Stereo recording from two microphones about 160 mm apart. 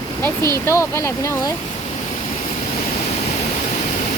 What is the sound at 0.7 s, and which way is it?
Speech, 15° left (ahead or behind).